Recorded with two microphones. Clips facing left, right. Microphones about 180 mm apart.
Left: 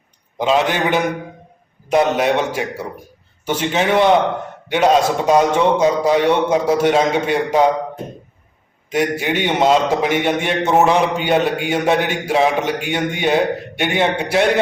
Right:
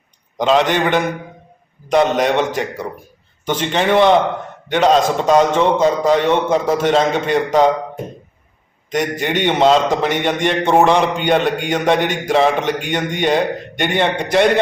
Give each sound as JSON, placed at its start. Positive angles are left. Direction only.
{"t": 0.3, "sound": "a man's voice", "side_deg": 5}
{"t": 8.9, "sound": "a man's voice", "side_deg": 10}